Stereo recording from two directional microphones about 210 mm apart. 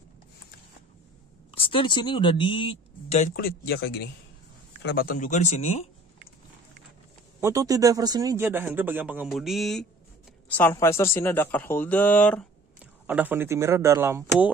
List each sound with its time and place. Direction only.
1.5 s speech: 25° left (ahead or behind)
7.3 s a man's voice: 15° right (ahead or behind); by 12.4 s 5° left (ahead or behind)
12.7 s speech: 5° right (ahead or behind)